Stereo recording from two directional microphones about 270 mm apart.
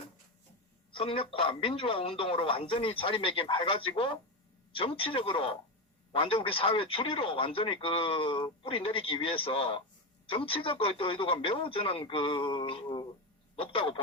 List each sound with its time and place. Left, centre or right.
0.9 s speech: centre